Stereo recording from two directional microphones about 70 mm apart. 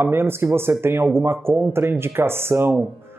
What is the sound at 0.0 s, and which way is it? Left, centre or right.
A man's voice, right.